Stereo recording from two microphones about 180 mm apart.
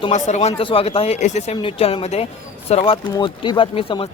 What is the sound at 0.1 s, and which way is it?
Speech, 40° left (ahead or behind).